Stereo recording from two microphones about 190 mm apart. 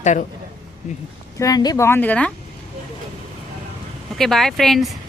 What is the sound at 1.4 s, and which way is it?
Speech, 20° left (ahead or behind).